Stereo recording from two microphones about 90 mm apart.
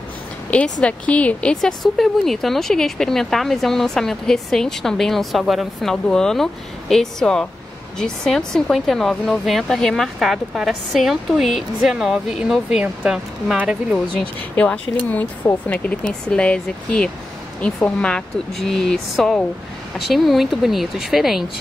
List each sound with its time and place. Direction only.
0.5 s a woman's voice: 15° left (ahead or behind); by 13.6 s 10° right (ahead or behind)
14.5 s a woman's voice: 20° left (ahead or behind); by 21.5 s 5° right (ahead or behind)